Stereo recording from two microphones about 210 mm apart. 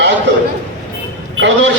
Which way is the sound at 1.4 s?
60° right (ahead or behind).